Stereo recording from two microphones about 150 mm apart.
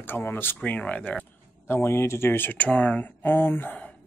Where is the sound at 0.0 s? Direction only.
15° left (ahead or behind).